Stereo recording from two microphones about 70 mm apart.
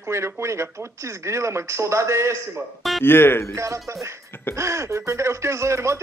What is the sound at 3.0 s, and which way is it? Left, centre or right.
Speech, left.